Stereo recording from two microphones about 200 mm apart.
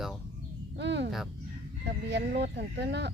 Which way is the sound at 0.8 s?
60° right (ahead or behind).